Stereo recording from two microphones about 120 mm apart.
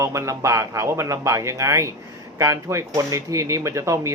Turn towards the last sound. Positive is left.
turn(degrees=-25)  # may be behind; listen again after turning